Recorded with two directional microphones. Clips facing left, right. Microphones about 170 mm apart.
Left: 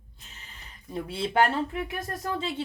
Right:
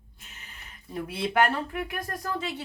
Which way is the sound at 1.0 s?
30° left (ahead or behind).